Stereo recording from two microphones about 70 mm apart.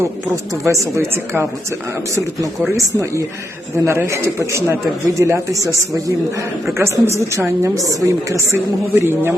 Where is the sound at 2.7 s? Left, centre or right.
Right.